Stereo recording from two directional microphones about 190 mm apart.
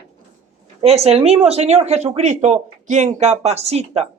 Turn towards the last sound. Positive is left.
turn(degrees=-35)  # may be behind; listen again after turning